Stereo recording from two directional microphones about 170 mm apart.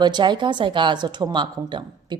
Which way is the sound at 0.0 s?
25° right (ahead or behind).